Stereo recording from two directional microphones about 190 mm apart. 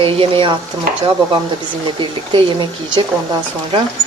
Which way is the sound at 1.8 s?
25° right (ahead or behind).